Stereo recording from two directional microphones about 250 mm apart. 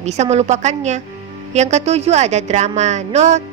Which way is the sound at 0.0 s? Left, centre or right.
Right.